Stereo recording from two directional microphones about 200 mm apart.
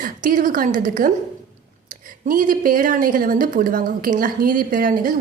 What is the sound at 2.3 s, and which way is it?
A woman's voice, 45° right (ahead or behind).